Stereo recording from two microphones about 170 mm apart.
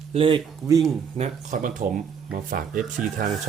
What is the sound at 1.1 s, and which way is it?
Speech, 45° right (ahead or behind).